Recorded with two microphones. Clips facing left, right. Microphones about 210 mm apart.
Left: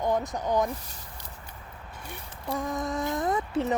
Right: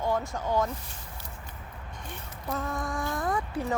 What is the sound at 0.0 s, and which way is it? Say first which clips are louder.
Speech: left 2 dB; 20° left (ahead or behind).